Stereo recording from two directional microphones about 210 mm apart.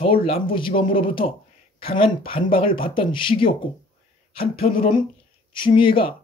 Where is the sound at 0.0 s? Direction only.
25° left (ahead or behind).